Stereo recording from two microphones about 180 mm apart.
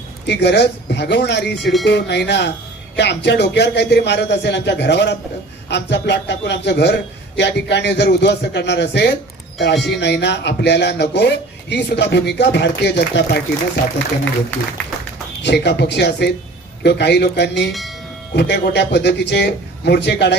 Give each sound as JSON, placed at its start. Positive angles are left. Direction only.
{"t": 0.3, "sound": "a man's voice", "side_deg": 70}
{"t": 1.5, "sound": "speech", "side_deg": 0}
{"t": 1.8, "sound": "a man's voice", "side_deg": 70}
{"t": 15.4, "sound": "a man's voice", "side_deg": 70}
{"t": 17.7, "sound": "speech", "side_deg": 0}
{"t": 18.3, "sound": "a man's voice", "side_deg": 70}